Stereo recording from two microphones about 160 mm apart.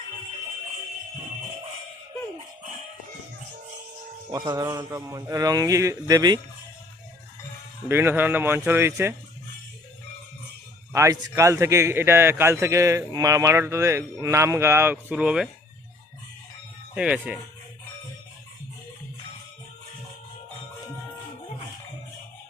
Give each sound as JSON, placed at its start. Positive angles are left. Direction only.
{"t": 4.3, "sound": "a man's voice", "side_deg": -20}
{"t": 7.9, "sound": "a man's voice", "side_deg": -15}
{"t": 10.9, "sound": "a man's voice", "side_deg": -20}
{"t": 16.9, "sound": "a man's voice", "side_deg": -5}